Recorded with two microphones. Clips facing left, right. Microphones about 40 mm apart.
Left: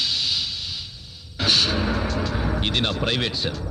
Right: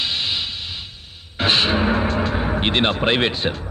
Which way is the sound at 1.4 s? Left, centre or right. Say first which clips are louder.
Right 4 dB; right.